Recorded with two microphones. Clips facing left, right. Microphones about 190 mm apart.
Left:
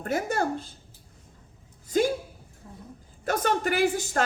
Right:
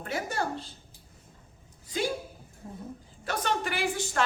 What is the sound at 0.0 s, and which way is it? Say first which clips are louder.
Speech: left 5 dB; 45° left (ahead or behind).